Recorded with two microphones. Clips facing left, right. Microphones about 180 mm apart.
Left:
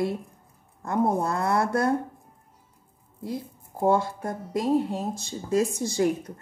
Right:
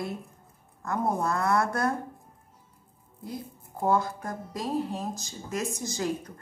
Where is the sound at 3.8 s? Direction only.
30° left (ahead or behind).